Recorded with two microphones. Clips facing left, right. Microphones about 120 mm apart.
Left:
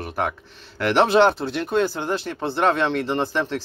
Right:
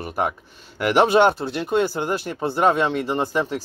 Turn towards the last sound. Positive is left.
turn(degrees=-5)  # may be behind; listen again after turning